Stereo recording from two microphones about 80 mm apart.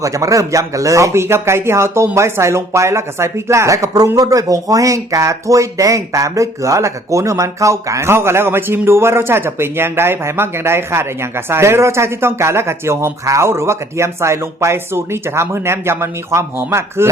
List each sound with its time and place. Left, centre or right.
0.0 s speech: right